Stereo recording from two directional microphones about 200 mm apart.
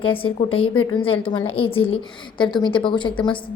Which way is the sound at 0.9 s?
25° left (ahead or behind).